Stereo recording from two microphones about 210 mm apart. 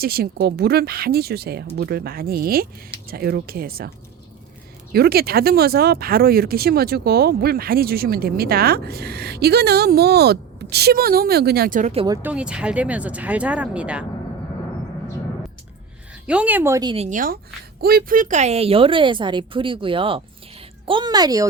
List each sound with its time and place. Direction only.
0.0 s speech: 45° right (ahead or behind)
12.0 s speech: 15° right (ahead or behind)
12.3 s speech: 5° right (ahead or behind)
16.2 s speech: 5° right (ahead or behind)
16.9 s a woman's voice: 35° right (ahead or behind); by 21.4 s 20° right (ahead or behind)